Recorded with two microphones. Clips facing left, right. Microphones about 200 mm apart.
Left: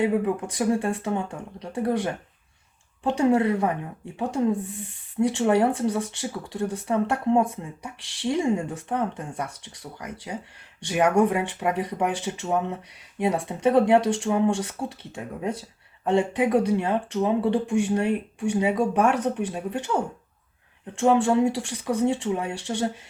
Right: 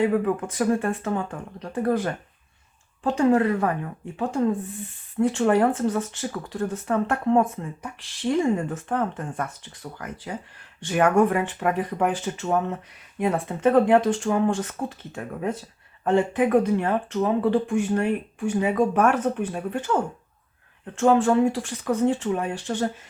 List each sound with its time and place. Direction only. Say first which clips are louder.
0.0 s speech: right 1 dB; 15° left (ahead or behind)
21.0 s speech: right 1 dB; 15° left (ahead or behind)